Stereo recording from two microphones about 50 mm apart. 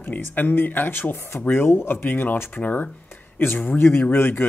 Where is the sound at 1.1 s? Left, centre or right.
Left.